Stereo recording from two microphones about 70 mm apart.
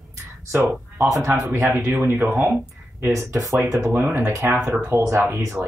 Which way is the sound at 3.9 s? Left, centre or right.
Right.